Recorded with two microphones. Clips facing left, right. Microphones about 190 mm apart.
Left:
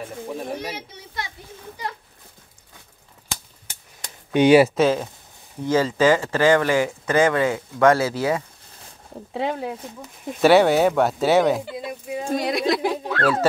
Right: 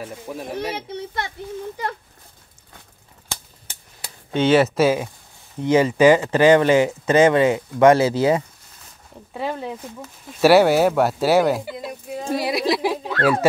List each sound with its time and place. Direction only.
0.6 s speech: 55° right (ahead or behind)
4.3 s speech: 15° left (ahead or behind)
4.7 s speech: 10° right (ahead or behind)
10.4 s speech: 5° right (ahead or behind)
11.7 s speech: 10° left (ahead or behind)
12.3 s speech: 5° right (ahead or behind)